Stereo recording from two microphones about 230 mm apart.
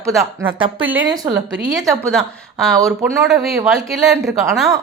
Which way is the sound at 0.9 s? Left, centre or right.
Centre.